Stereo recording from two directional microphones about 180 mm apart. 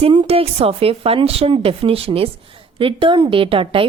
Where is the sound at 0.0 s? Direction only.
30° right (ahead or behind).